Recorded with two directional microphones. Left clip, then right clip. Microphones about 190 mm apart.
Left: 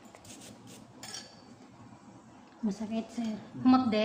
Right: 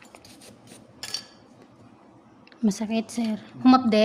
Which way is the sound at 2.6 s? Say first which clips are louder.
Right 9 dB; 70° right (ahead or behind).